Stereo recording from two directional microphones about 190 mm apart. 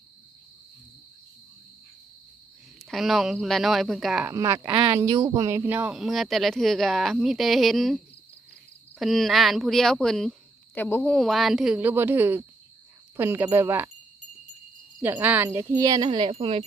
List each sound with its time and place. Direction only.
2.9 s speech: centre (ahead or behind)
4.3 s speech: 15° right (ahead or behind)
15.0 s speech: 10° right (ahead or behind); by 16.6 s 30° right (ahead or behind)